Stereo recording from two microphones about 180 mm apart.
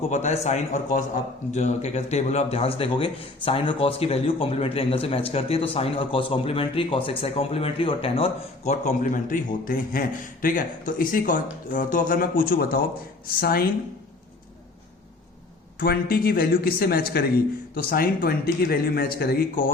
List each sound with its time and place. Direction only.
0.1 s a man's voice: 40° left (ahead or behind); by 13.7 s 55° left (ahead or behind)
15.8 s a man's voice: 55° left (ahead or behind)